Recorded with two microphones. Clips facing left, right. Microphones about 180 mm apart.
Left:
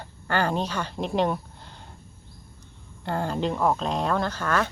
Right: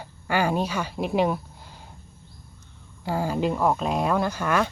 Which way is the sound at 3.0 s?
5° right (ahead or behind).